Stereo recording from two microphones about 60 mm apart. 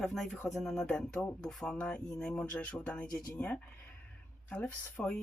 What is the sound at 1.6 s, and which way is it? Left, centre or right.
Speech, centre.